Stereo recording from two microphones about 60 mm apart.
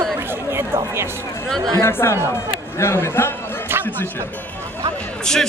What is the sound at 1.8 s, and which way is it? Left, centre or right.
A man's voice, left.